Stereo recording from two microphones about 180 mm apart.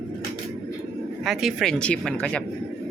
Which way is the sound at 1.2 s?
Centre (ahead or behind).